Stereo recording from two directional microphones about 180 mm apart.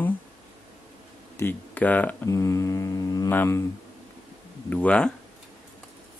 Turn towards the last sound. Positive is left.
turn(degrees=5)  # may be behind; listen again after turning